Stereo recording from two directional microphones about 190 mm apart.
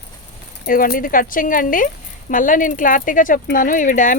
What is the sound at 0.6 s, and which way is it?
Speech, 50° left (ahead or behind).